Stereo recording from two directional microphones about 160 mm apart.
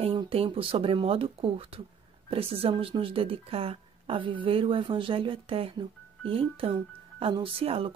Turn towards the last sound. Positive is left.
turn(degrees=-35)  # may be behind; listen again after turning